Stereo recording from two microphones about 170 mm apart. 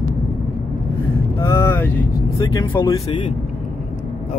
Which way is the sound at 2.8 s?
30° left (ahead or behind).